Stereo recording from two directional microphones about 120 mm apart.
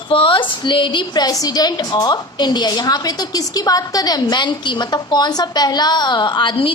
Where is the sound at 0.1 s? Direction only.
50° left (ahead or behind).